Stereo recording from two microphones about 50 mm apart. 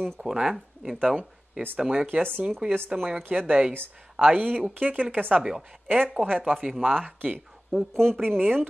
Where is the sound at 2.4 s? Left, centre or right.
Centre.